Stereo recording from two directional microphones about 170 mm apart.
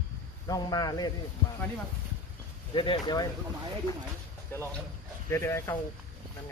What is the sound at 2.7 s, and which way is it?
Speech, 30° left (ahead or behind).